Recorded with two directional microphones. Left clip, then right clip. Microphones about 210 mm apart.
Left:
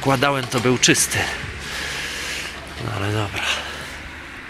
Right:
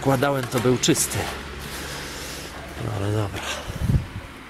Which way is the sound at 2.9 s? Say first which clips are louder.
Left 4 dB; 5° right (ahead or behind).